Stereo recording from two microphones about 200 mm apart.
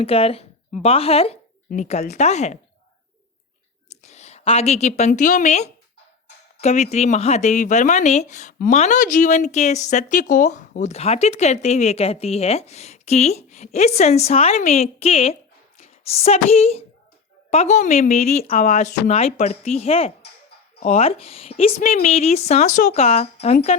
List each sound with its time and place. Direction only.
0.0 s speech: 30° left (ahead or behind)
3.8 s a woman's voice: 35° left (ahead or behind)